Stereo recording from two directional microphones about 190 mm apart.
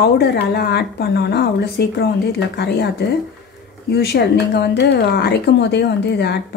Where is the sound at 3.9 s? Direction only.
60° left (ahead or behind).